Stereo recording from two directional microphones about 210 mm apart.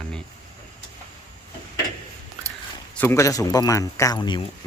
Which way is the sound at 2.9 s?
10° left (ahead or behind).